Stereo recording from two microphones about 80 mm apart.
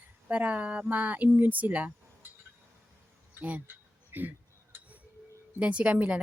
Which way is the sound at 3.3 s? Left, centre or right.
Centre.